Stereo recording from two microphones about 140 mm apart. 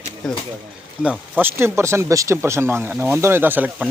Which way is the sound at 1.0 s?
10° right (ahead or behind).